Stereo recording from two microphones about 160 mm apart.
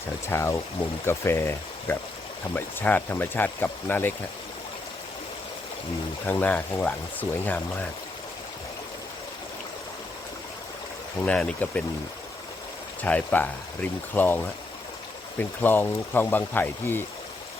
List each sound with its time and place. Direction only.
0.3 s speech: 15° left (ahead or behind)
6.2 s speech: 10° left (ahead or behind)
11.3 s speech: 5° left (ahead or behind)
13.0 s speech: 10° left (ahead or behind)